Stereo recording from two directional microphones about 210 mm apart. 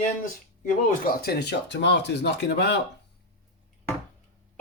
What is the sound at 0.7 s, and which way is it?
Speech, 45° left (ahead or behind).